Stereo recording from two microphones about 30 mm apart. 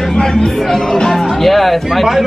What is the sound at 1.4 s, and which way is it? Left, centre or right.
Speech, centre.